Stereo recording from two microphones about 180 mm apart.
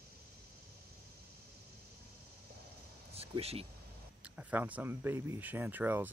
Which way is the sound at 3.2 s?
35° right (ahead or behind).